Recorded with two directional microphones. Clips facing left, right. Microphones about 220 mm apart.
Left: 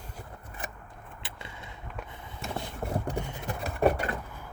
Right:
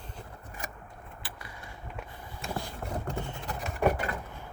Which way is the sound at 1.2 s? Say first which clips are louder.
Left 3 dB; 25° left (ahead or behind).